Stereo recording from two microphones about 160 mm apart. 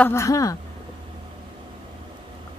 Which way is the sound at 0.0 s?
15° left (ahead or behind).